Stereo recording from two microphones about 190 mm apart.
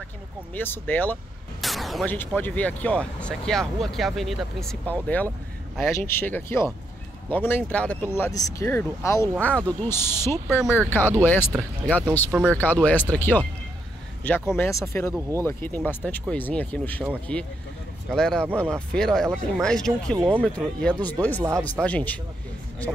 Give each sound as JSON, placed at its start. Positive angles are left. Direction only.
{"t": 0.6, "sound": "speech", "side_deg": 10}
{"t": 12.3, "sound": "speech", "side_deg": -5}
{"t": 12.5, "sound": "speech", "side_deg": 10}
{"t": 18.1, "sound": "speech", "side_deg": 5}
{"t": 20.2, "sound": "speech", "side_deg": -10}
{"t": 21.8, "sound": "speech", "side_deg": 5}